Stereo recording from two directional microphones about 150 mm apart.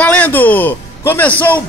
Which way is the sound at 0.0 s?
10° left (ahead or behind).